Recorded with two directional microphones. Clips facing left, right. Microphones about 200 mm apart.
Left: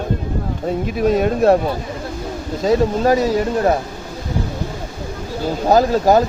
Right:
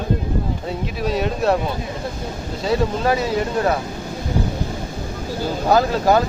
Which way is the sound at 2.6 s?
40° left (ahead or behind).